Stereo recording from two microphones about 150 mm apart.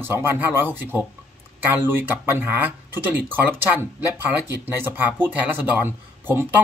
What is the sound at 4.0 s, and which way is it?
Speech, 15° right (ahead or behind).